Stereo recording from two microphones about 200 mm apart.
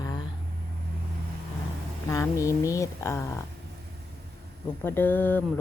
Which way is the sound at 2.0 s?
15° left (ahead or behind).